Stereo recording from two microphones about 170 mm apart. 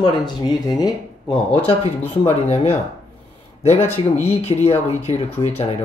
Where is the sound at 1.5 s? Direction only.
35° left (ahead or behind).